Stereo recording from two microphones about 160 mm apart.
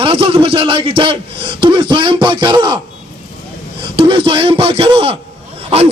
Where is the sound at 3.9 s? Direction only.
35° right (ahead or behind).